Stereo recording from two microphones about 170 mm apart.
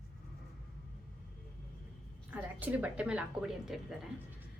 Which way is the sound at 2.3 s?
10° right (ahead or behind).